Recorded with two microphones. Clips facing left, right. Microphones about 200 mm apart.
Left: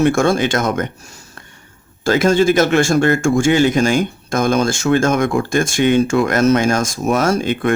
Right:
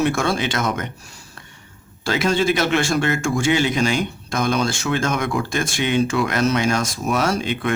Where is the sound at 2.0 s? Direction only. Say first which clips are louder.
Left 6 dB; 45° left (ahead or behind).